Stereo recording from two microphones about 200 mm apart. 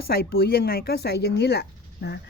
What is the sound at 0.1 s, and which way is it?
Speech, 50° left (ahead or behind).